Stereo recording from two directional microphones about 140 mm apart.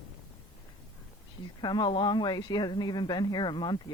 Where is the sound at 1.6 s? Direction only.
30° left (ahead or behind).